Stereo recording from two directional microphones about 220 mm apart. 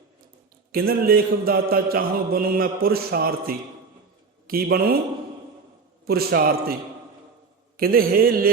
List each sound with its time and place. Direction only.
0.7 s mantra: 40° right (ahead or behind)
6.1 s mantra: 45° right (ahead or behind)
7.8 s mantra: 40° right (ahead or behind)